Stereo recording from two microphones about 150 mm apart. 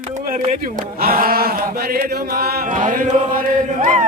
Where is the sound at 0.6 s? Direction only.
75° right (ahead or behind).